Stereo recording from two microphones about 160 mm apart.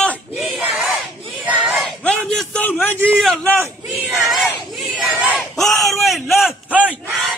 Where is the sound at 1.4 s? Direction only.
10° right (ahead or behind); by 3.0 s 10° left (ahead or behind).